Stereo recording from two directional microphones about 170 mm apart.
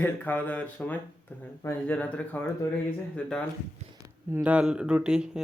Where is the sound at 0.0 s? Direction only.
10° left (ahead or behind).